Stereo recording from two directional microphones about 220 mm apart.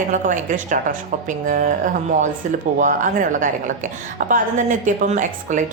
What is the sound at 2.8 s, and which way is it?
A woman's voice, 35° right (ahead or behind).